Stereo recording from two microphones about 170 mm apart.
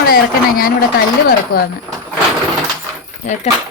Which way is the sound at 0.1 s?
60° left (ahead or behind).